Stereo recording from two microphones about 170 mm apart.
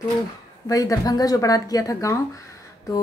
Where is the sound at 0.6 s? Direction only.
20° left (ahead or behind).